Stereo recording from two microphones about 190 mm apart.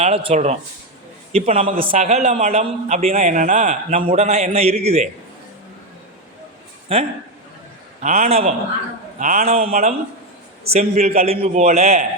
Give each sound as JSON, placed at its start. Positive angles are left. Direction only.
{"t": 0.0, "sound": "a man's voice", "side_deg": -30}
{"t": 6.9, "sound": "a man's voice", "side_deg": -30}